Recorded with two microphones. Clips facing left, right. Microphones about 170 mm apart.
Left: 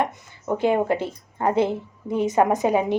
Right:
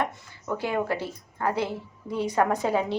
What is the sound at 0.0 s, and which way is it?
A woman's voice, 20° left (ahead or behind).